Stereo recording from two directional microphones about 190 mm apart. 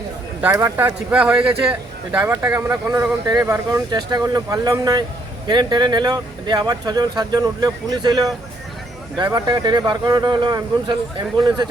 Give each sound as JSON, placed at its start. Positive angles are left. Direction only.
{"t": 0.4, "sound": "speech", "side_deg": -15}